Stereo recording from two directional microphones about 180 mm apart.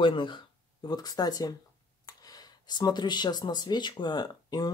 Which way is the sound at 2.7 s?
25° left (ahead or behind).